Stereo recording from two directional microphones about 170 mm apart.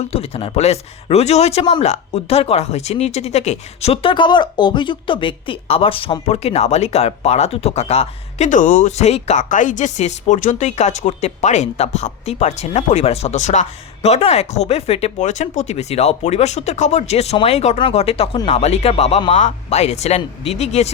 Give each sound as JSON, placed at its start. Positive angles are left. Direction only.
{"t": 0.0, "sound": "speech", "side_deg": 35}